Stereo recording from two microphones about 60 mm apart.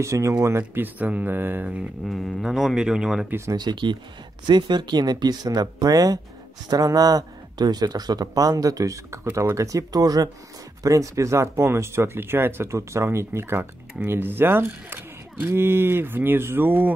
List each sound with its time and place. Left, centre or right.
0.0 s speech: right
0.6 s mantra: right
1.3 s mantra: right
2.0 s speech: centre
2.4 s speech: centre
5.0 s speech: right
9.6 s speech: right
10.8 s speech: right
15.5 s mantra: right